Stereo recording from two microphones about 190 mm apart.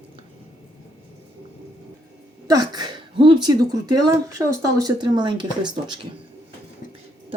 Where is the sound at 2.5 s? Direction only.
20° right (ahead or behind).